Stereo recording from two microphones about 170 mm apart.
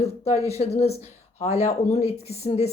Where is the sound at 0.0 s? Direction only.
40° left (ahead or behind).